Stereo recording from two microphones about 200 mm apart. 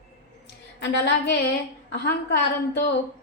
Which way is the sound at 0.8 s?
60° left (ahead or behind).